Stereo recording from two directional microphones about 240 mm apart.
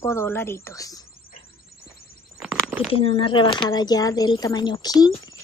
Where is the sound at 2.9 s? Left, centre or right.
Left.